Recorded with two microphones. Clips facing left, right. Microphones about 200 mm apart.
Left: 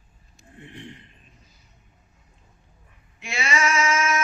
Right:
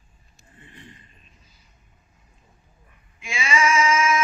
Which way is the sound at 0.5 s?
75° left (ahead or behind).